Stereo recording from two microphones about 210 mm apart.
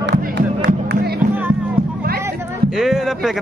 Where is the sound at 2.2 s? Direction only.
Centre (ahead or behind).